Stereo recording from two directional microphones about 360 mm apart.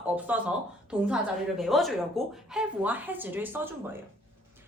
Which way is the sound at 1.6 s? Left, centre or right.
Centre.